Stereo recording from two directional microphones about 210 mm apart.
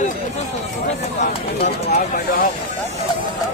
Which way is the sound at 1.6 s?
40° left (ahead or behind).